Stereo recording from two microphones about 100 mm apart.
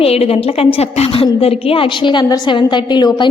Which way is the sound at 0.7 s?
65° left (ahead or behind).